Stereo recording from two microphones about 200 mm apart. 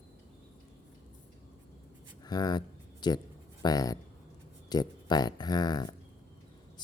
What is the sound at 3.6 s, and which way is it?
Speech, 20° left (ahead or behind).